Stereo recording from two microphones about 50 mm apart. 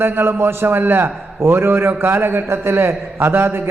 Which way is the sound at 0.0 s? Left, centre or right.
Right.